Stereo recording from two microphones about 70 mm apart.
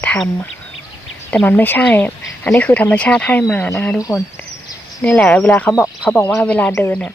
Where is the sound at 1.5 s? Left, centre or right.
Left.